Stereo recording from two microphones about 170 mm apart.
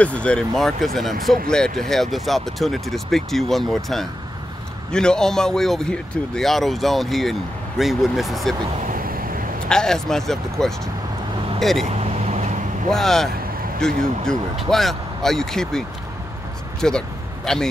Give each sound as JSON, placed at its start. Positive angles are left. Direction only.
{"t": 0.0, "sound": "a man's voice", "side_deg": 5}
{"t": 8.8, "sound": "vehicle", "side_deg": -55}
{"t": 9.7, "sound": "a man's voice", "side_deg": 5}
{"t": 12.0, "sound": "vehicle", "side_deg": -40}
{"t": 12.9, "sound": "a man's voice", "side_deg": 0}
{"t": 16.8, "sound": "a man's voice", "side_deg": 5}